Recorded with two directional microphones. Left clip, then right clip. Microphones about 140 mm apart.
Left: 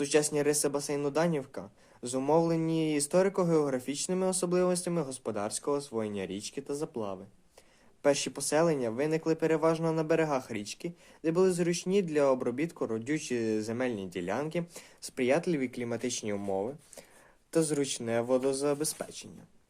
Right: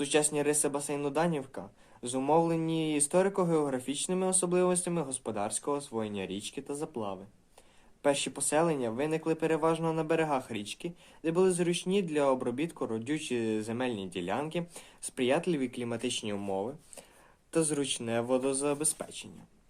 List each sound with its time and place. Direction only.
0.0 s speech: 40° left (ahead or behind)